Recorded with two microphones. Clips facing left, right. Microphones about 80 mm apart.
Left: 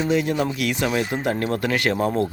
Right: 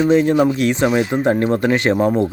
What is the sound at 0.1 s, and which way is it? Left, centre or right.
Speech, right.